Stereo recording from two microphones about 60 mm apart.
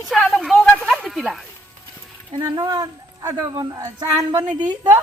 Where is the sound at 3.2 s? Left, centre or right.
Right.